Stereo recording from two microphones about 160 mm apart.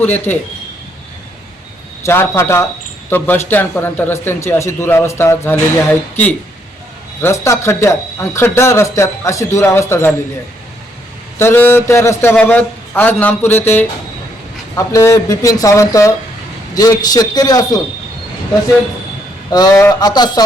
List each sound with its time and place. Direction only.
0.0 s a man's voice: 10° left (ahead or behind)
2.0 s a man's voice: 15° left (ahead or behind)
11.3 s a man's voice: 15° left (ahead or behind)
19.5 s a man's voice: 25° left (ahead or behind)